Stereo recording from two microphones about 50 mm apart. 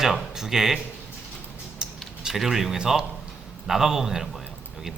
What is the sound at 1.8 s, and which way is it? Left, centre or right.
Typing, centre.